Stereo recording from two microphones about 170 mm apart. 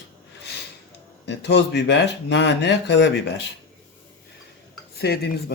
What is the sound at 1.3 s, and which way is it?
Speech, 80° left.